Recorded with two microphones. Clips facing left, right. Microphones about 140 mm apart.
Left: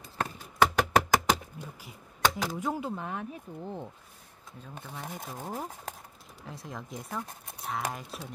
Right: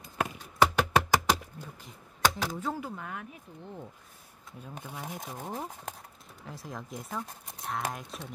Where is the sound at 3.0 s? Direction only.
30° left (ahead or behind).